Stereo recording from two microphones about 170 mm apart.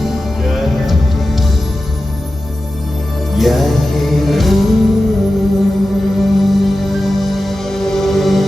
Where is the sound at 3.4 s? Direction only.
Centre (ahead or behind).